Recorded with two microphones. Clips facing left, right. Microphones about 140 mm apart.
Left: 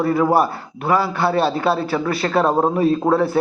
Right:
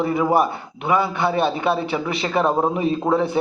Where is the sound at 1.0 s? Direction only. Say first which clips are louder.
Left 2 dB; 20° right (ahead or behind).